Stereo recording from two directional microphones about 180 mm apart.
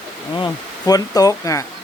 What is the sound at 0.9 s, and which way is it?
Speech, 20° left (ahead or behind).